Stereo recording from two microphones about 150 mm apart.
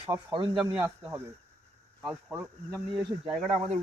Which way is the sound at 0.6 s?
20° right (ahead or behind).